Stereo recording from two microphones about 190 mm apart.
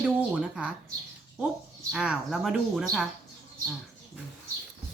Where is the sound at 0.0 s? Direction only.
5° right (ahead or behind).